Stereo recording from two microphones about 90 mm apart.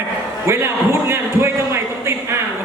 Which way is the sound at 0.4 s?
30° right (ahead or behind).